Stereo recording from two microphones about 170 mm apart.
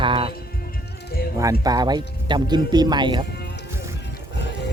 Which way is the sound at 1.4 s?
20° right (ahead or behind).